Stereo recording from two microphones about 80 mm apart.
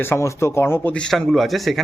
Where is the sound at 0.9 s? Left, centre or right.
Centre.